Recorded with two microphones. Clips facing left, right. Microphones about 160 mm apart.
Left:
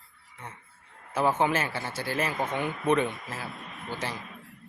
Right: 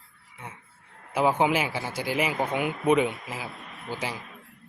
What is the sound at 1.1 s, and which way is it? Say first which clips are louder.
Speech: right 2 dB; 10° right (ahead or behind).